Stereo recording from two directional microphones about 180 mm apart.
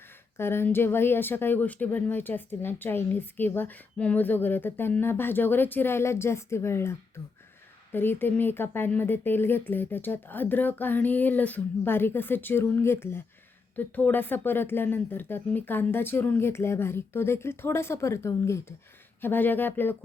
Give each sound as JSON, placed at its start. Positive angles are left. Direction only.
{"t": 0.3, "sound": "speech", "side_deg": 15}
{"t": 7.9, "sound": "speech", "side_deg": 10}